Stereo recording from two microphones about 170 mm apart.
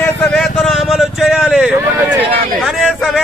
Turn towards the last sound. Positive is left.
turn(degrees=-5)  # may be behind; listen again after turning